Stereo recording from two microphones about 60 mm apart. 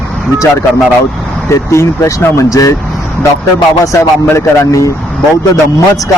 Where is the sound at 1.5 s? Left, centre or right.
Left.